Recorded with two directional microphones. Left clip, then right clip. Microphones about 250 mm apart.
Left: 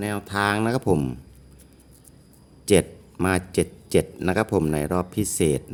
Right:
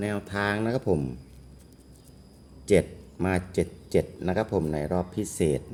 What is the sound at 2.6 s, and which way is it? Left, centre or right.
Speech, left.